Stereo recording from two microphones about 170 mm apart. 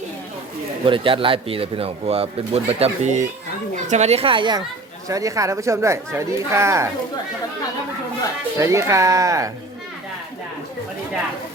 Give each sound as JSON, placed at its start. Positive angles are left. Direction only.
{"t": 0.9, "sound": "speech", "side_deg": -30}
{"t": 8.5, "sound": "speech", "side_deg": -15}